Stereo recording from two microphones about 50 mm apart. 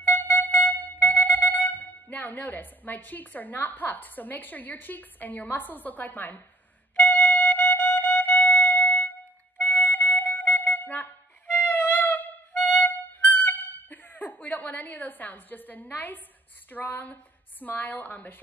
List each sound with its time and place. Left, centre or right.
0.0 s music: left
16.7 s a woman's voice: left